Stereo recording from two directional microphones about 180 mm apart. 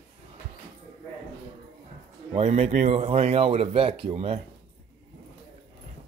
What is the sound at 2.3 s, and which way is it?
Speech, 35° right (ahead or behind).